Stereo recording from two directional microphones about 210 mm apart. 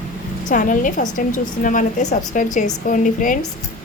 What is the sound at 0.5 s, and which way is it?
A woman's voice, 40° left (ahead or behind).